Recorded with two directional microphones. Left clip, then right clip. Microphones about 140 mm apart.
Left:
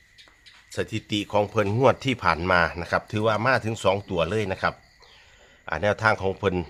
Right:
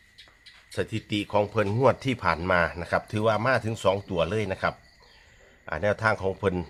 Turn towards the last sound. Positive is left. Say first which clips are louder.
# left 2 dB
turn(degrees=25)  # may be behind; listen again after turning